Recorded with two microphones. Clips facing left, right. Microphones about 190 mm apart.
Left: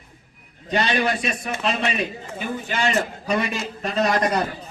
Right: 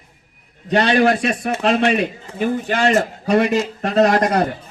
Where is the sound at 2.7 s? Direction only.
60° right (ahead or behind).